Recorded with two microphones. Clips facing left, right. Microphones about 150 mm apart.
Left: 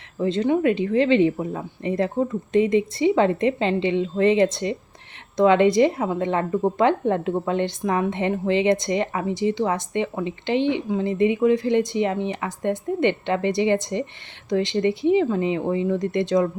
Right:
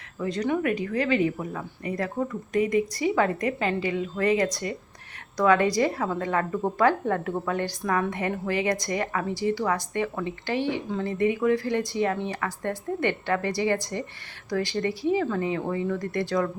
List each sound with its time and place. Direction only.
0.2 s a woman's voice: 25° left (ahead or behind)